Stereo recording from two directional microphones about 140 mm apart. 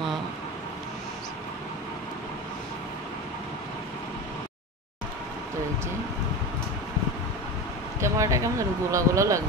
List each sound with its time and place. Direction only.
8.0 s speech: 20° right (ahead or behind)